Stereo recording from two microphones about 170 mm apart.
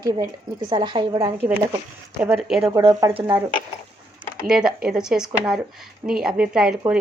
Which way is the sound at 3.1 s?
20° right (ahead or behind).